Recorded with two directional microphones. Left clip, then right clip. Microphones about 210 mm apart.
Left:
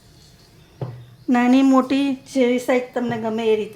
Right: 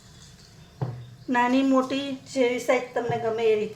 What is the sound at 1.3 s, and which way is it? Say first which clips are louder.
A woman's voice: left 5 dB; 40° left (ahead or behind).